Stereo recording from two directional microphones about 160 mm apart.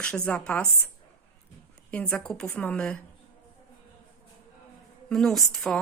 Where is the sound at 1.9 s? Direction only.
5° left (ahead or behind).